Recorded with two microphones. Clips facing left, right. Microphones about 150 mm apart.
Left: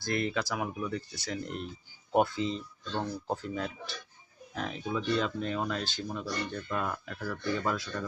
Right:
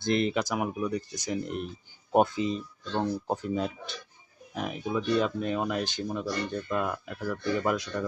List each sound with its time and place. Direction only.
0.0 s speech: 20° right (ahead or behind)